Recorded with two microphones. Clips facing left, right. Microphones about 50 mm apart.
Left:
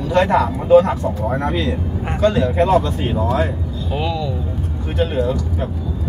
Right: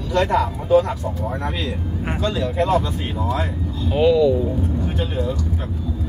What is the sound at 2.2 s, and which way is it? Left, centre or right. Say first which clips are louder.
Speech: left 8 dB; left.